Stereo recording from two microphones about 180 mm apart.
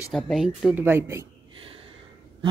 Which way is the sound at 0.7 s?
10° right (ahead or behind).